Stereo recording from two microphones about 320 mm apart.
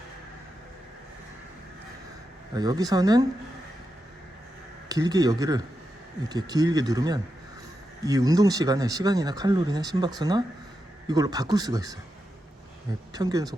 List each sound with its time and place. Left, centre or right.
2.5 s speech: centre
4.9 s speech: centre
13.1 s speech: centre